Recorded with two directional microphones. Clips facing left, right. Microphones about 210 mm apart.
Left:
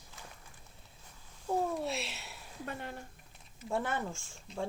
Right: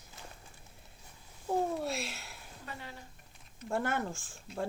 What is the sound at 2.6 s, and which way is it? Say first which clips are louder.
Speech: left 5 dB; 55° left (ahead or behind).